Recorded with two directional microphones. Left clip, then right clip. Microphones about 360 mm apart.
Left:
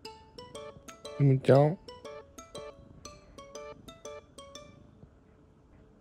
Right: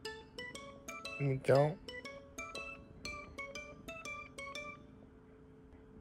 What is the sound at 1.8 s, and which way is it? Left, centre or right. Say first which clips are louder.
Music: left 3 dB; centre.